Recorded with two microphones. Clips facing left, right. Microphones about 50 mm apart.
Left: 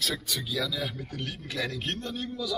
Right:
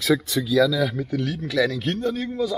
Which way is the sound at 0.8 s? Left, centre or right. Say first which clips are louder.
Right 11 dB; right.